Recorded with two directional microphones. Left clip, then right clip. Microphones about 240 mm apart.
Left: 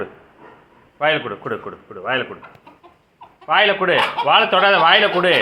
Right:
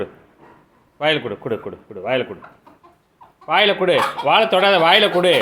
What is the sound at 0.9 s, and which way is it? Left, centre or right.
Speech, right.